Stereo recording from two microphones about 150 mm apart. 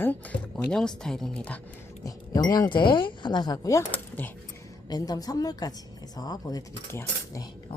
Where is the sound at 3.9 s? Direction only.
15° left (ahead or behind).